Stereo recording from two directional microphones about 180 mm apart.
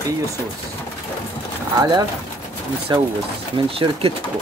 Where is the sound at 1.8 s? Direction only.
20° right (ahead or behind).